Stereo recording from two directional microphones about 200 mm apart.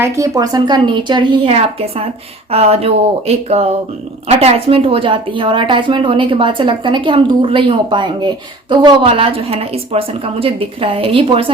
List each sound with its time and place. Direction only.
0.0 s a woman's voice: 15° right (ahead or behind)